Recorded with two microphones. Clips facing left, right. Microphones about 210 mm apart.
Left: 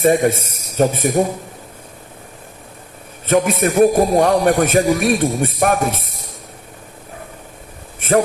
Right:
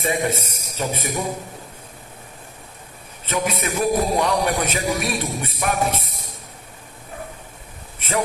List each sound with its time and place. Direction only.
0.0 s a man's voice: 50° left (ahead or behind)
3.2 s a man's voice: 50° left (ahead or behind)
7.9 s a sound: 50° left (ahead or behind)